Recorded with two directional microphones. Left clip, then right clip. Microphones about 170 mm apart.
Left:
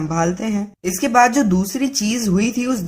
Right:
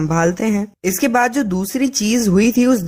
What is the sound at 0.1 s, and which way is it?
Speech, 45° right (ahead or behind).